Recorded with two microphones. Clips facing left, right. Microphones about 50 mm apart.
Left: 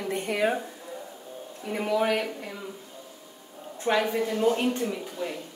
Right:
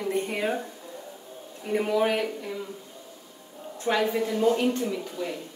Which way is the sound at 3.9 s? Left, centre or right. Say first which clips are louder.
Left 1 dB; centre.